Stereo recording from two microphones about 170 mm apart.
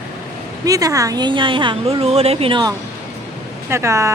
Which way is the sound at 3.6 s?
15° right (ahead or behind).